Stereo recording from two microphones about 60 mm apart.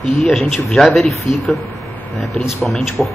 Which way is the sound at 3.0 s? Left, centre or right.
Centre.